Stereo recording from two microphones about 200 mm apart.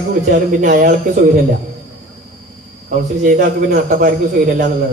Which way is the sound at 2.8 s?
40° right (ahead or behind).